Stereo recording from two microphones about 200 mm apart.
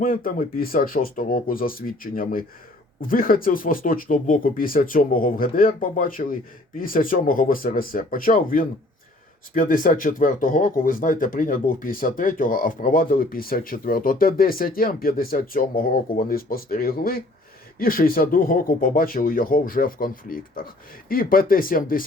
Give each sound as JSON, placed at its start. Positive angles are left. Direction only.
{"t": 0.0, "sound": "speech", "side_deg": 45}